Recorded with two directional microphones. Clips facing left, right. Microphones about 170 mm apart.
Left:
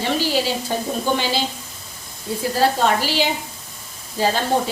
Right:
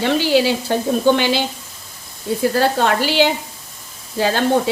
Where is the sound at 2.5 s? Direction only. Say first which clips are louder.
Left 1 dB; 65° right (ahead or behind).